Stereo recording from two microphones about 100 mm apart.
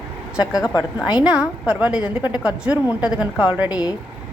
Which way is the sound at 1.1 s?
10° right (ahead or behind).